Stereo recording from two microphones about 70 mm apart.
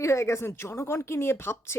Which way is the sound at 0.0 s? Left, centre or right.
Left.